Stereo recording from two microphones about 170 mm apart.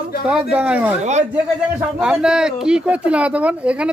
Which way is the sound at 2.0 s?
5° right (ahead or behind).